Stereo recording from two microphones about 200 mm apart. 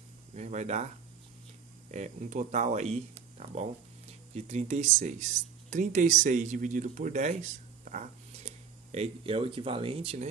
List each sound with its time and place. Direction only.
0.3 s speech: 35° right (ahead or behind)
1.9 s speech: 35° right (ahead or behind)